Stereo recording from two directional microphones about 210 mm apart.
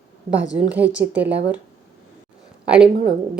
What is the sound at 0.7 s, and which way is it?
Speech, 10° right (ahead or behind).